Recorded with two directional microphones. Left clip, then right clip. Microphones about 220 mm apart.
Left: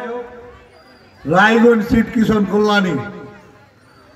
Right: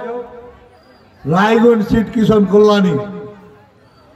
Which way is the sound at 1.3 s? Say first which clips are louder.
Even; 50° right (ahead or behind).